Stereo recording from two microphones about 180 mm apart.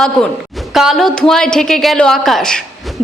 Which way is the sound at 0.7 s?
Centre (ahead or behind).